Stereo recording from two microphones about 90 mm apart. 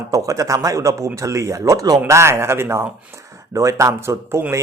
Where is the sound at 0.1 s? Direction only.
40° right (ahead or behind).